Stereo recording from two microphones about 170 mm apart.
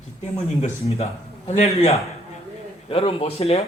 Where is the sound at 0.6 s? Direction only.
35° left (ahead or behind).